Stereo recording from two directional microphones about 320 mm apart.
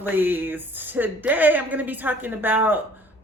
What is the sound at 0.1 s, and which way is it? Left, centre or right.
A woman's voice, centre.